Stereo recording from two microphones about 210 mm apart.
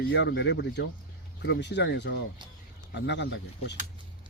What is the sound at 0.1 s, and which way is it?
Speech, 55° left (ahead or behind).